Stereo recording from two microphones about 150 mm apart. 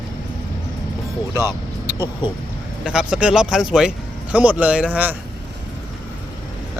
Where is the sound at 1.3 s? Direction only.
25° left (ahead or behind).